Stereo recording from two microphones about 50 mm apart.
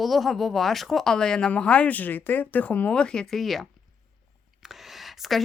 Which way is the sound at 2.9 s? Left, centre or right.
Centre.